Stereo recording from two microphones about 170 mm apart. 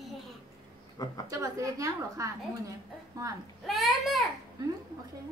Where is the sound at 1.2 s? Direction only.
20° right (ahead or behind).